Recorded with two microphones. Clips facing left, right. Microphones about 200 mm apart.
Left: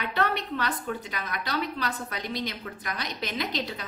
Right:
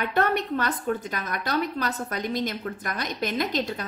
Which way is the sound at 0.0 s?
50° right (ahead or behind).